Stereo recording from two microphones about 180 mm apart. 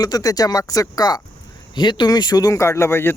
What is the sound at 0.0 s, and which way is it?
Speech, 20° left (ahead or behind).